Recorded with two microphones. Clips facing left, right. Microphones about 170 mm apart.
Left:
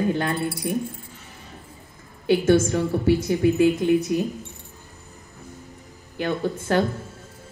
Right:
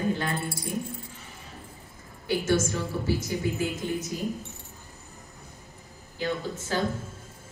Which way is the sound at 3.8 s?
65° left (ahead or behind).